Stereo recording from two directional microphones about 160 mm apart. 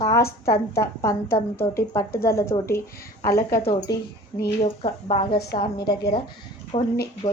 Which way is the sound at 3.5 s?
70° left (ahead or behind).